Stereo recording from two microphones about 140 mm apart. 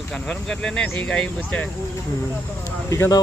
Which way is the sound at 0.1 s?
5° left (ahead or behind).